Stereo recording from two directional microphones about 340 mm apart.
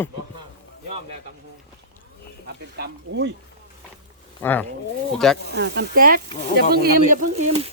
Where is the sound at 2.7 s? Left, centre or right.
Right.